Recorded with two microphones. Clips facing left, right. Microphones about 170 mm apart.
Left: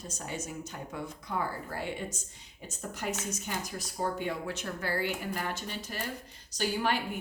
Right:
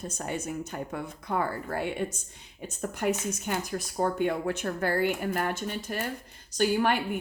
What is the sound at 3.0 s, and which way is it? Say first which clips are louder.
Speech: right 7 dB; 55° right (ahead or behind).